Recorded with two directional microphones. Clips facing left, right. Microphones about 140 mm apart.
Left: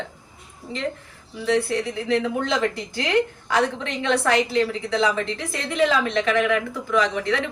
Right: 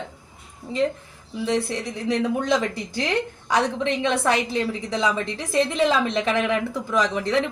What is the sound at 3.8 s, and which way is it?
A woman's voice, 15° right (ahead or behind).